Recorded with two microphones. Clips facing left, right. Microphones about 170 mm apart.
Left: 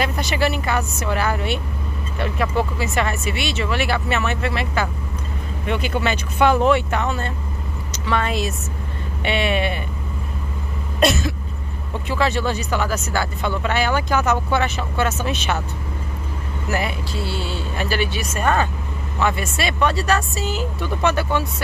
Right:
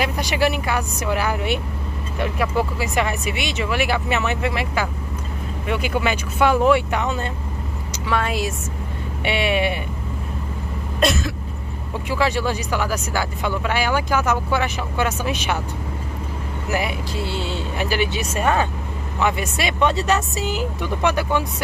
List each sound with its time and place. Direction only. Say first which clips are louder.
0.0 s speech: right 1 dB; 10° right (ahead or behind)
11.0 s cough: left 2 dB; centre (ahead or behind)
12.1 s speech: even; 10° right (ahead or behind)
16.6 s speech: even; 15° right (ahead or behind)